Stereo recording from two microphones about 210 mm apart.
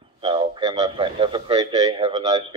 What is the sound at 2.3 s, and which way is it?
Speech, 35° right (ahead or behind).